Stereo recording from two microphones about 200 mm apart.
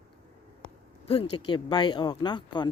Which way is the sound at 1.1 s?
30° left (ahead or behind).